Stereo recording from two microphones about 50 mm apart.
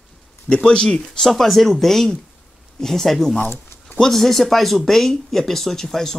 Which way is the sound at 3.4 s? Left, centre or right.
Left.